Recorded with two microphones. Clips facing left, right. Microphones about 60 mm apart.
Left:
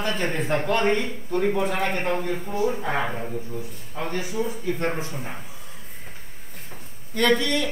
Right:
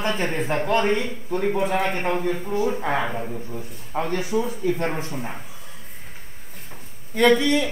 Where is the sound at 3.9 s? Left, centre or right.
Right.